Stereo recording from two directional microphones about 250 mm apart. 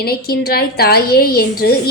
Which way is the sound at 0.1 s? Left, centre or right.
Left.